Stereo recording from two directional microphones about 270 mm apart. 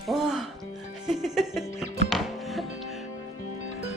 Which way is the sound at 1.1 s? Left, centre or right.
Centre.